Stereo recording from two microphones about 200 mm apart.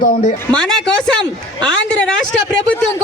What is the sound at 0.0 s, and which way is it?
Speech, 45° left (ahead or behind).